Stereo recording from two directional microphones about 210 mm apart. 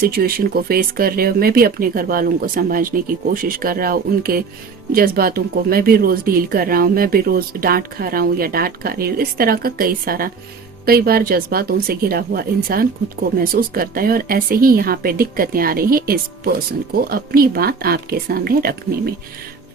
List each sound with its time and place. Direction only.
0.0 s speech: 45° right (ahead or behind)